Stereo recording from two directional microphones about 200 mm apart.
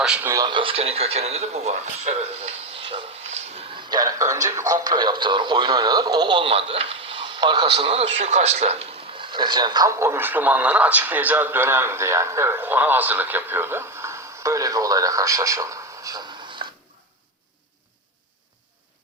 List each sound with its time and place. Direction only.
0.0 s speech: 5° right (ahead or behind); by 2.6 s 35° right (ahead or behind)
2.8 s a sound: 25° right (ahead or behind)
3.8 s speech: 20° right (ahead or behind)